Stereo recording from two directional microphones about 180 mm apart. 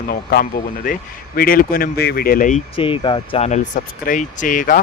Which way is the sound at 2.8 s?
30° left (ahead or behind).